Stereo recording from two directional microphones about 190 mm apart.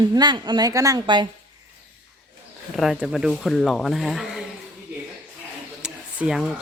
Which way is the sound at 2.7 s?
Centre (ahead or behind).